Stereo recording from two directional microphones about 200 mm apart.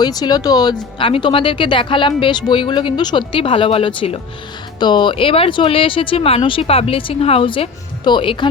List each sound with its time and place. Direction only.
0.0 s speech: 20° left (ahead or behind)